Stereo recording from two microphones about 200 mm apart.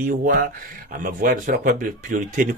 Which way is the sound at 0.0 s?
45° right (ahead or behind).